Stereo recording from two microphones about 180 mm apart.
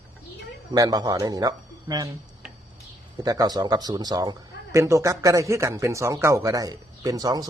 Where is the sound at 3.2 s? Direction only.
20° right (ahead or behind).